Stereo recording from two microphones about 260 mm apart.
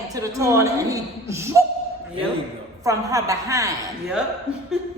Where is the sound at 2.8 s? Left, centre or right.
Centre.